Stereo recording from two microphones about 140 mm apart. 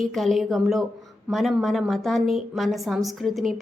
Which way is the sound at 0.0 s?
Centre (ahead or behind).